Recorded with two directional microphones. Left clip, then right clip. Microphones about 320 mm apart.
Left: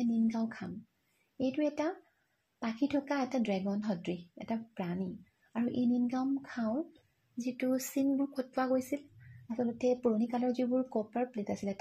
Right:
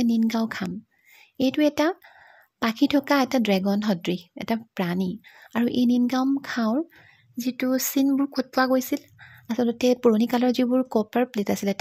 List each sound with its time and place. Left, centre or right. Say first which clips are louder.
0.0 s a woman's voice: right 9 dB; right